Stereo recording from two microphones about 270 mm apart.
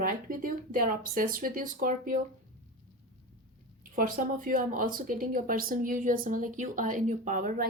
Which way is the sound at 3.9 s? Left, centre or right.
Right.